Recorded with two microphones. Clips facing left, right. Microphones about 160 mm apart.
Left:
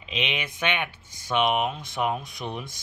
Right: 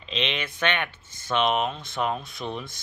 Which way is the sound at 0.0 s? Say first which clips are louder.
Right 1 dB; 10° left (ahead or behind).